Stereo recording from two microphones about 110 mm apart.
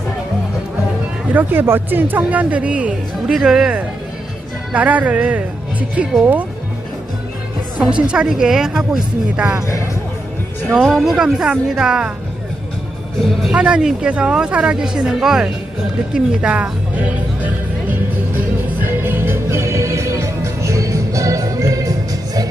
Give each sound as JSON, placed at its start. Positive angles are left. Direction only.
{"t": 1.3, "sound": "speech", "side_deg": -15}
{"t": 8.0, "sound": "speech", "side_deg": -10}
{"t": 9.6, "sound": "speech", "side_deg": 25}
{"t": 10.7, "sound": "speech", "side_deg": -5}
{"t": 13.2, "sound": "speech", "side_deg": -5}
{"t": 18.9, "sound": "music", "side_deg": -20}